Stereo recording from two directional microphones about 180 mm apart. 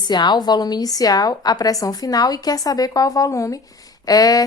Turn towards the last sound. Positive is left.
turn(degrees=20)  # may be behind; listen again after turning